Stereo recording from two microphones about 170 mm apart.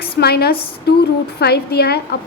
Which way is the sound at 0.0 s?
70° left (ahead or behind).